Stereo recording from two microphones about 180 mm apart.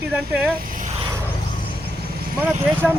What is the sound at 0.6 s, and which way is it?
Vehicle, 45° right (ahead or behind).